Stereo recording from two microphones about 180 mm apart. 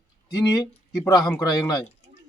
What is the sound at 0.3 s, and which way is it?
Speech, 20° left (ahead or behind).